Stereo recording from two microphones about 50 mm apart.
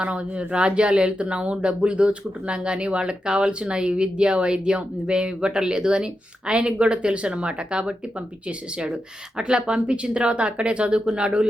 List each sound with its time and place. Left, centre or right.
0.0 s speech: right